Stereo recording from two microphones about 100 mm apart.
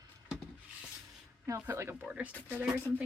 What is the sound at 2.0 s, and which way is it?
Speech, 15° right (ahead or behind).